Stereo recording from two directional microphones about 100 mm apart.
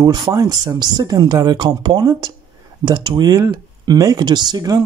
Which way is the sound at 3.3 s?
30° right (ahead or behind).